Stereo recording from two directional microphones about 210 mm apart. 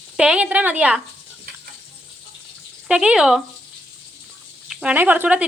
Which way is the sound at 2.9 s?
5° right (ahead or behind).